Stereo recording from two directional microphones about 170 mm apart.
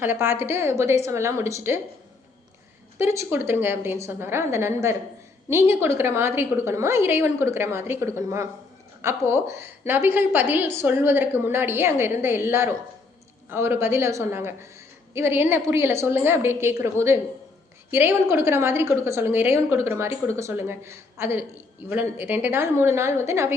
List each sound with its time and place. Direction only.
0.0 s a woman's voice: 15° right (ahead or behind)
3.0 s a woman's voice: 15° right (ahead or behind)